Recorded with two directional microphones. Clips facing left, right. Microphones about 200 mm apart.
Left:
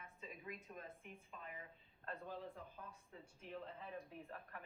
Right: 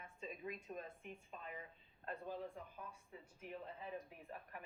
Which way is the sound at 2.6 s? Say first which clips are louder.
Right 2 dB; 15° right (ahead or behind).